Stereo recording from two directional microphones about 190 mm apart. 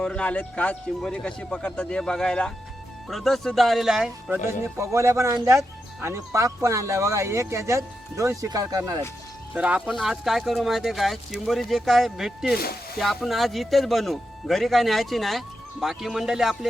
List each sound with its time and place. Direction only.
0.0 s speech: 5° left (ahead or behind)
4.4 s speech: 15° right (ahead or behind)
9.6 s speech: 5° right (ahead or behind)